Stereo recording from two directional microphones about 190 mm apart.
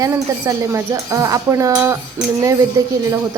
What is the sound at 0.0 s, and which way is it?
Speech, 15° right (ahead or behind).